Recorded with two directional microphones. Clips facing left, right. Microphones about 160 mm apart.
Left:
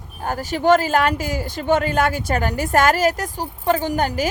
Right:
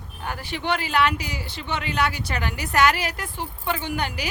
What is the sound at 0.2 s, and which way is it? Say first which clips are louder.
Speech: left 8 dB; 40° left (ahead or behind).